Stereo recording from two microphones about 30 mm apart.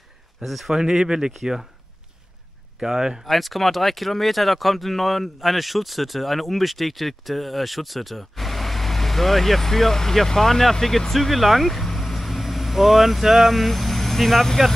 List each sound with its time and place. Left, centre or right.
0.4 s speech: centre
0.7 s speech: centre
2.8 s speech: centre
3.3 s speech: centre